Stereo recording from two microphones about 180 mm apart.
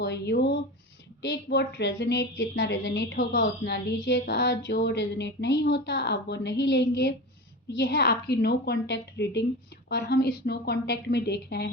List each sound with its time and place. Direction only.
0.0 s a woman's voice: 65° left (ahead or behind)